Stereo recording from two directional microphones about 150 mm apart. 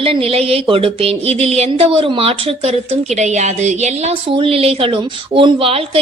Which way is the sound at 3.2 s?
50° right (ahead or behind).